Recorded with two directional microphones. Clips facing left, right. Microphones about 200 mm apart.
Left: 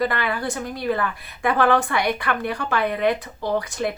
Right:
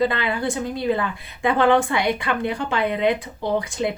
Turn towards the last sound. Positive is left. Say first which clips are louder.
# right 1 dB
turn(degrees=-20)  # may be behind; listen again after turning